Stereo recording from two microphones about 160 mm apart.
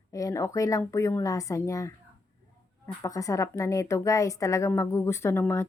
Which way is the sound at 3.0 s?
20° left (ahead or behind).